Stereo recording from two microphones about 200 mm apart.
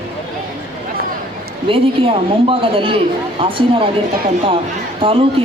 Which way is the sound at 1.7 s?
25° right (ahead or behind).